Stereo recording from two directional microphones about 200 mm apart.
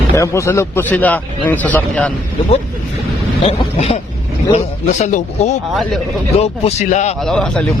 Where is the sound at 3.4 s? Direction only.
30° left (ahead or behind).